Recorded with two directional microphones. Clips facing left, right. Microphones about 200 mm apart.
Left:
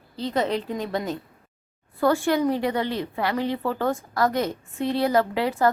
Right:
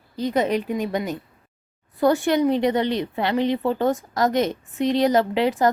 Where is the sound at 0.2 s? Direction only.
15° right (ahead or behind).